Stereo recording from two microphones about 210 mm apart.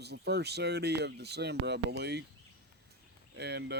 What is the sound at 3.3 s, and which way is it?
Speech, 50° right (ahead or behind).